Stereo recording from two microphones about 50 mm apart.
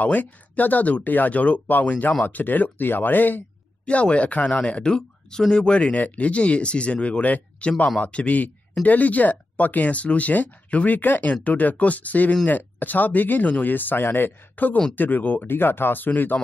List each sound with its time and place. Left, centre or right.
0.0 s speech: left
3.8 s speech: left